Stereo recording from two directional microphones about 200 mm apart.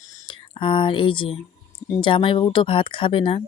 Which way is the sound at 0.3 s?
25° left (ahead or behind).